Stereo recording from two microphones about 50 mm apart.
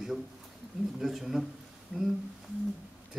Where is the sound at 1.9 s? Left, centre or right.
Right.